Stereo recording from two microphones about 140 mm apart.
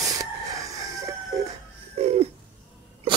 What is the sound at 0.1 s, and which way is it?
Chicken, 25° right (ahead or behind).